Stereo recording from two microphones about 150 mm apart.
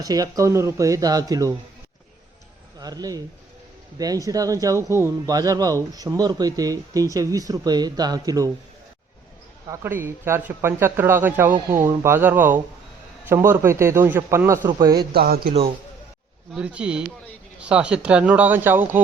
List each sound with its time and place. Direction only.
0.0 s speech: 25° right (ahead or behind)
2.7 s speech: 25° right (ahead or behind)
9.6 s a man's voice: 15° right (ahead or behind)
15.1 s speech: 90° right
16.5 s a man's voice: 5° right (ahead or behind)